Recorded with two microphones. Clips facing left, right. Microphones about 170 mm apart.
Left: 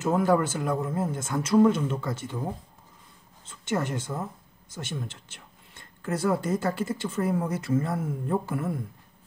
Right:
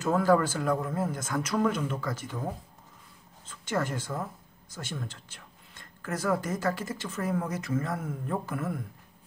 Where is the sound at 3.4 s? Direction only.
25° left (ahead or behind).